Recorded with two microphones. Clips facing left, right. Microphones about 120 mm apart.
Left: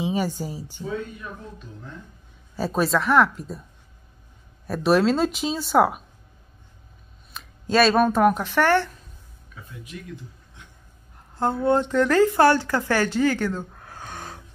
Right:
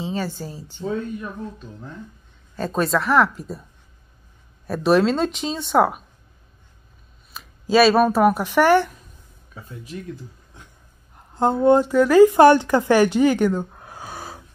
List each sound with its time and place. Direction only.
0.0 s speech: 15° left (ahead or behind)
2.5 s speech: 5° left (ahead or behind)
4.6 s speech: centre (ahead or behind)
7.3 s speech: 5° right (ahead or behind)
9.6 s speech: 30° right (ahead or behind)
11.3 s speech: 20° right (ahead or behind)
11.8 s a woman's voice: 5° right (ahead or behind)